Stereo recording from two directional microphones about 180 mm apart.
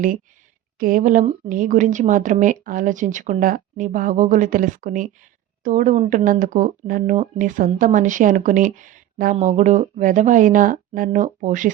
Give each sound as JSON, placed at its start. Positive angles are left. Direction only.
{"t": 0.8, "sound": "speech", "side_deg": -50}